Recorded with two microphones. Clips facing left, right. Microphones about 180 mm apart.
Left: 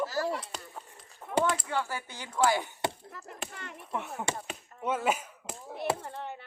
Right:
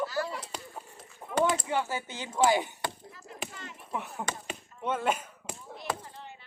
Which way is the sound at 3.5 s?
55° left (ahead or behind).